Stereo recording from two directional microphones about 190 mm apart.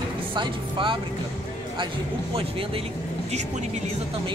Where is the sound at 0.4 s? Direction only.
25° right (ahead or behind).